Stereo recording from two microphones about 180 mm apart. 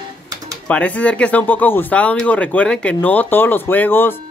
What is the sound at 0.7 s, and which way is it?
Speech, 10° left (ahead or behind).